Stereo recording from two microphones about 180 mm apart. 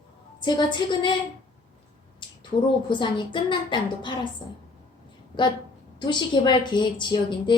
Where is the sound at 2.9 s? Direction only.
25° left (ahead or behind).